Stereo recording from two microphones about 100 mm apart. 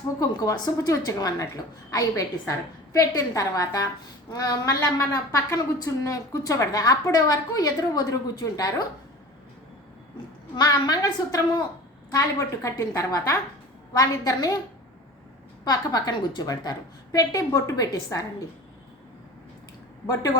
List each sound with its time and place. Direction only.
0.2 s a woman's voice: 40° left (ahead or behind)
10.5 s a woman's voice: 40° left (ahead or behind)
15.6 s a woman's voice: 40° left (ahead or behind)